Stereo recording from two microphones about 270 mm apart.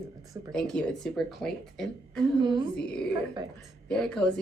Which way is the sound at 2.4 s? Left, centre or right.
Centre.